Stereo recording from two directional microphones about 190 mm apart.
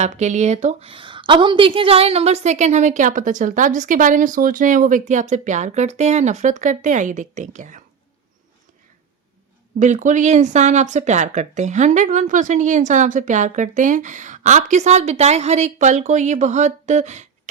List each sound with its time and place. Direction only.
0.0 s a woman's voice: 35° right (ahead or behind)
9.7 s a woman's voice: 40° right (ahead or behind)